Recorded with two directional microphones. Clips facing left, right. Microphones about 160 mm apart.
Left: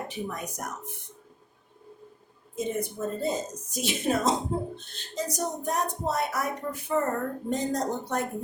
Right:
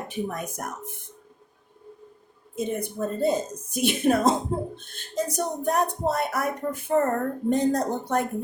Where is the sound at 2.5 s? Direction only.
60° right (ahead or behind).